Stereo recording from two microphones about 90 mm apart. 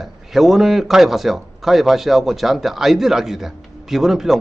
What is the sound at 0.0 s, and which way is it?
A man's voice, centre (ahead or behind).